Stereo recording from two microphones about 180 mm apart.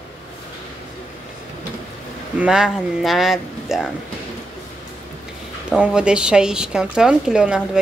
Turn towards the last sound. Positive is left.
turn(degrees=-5)  # may be behind; listen again after turning